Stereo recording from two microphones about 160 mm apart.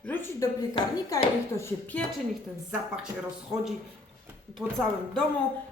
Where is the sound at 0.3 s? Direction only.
25° left (ahead or behind).